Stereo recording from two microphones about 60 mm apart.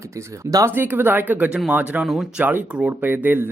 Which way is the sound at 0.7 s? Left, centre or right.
Right.